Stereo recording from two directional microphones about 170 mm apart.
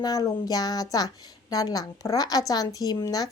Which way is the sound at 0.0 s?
20° left (ahead or behind).